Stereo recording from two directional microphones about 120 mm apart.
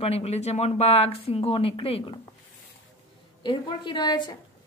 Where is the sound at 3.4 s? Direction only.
40° left (ahead or behind).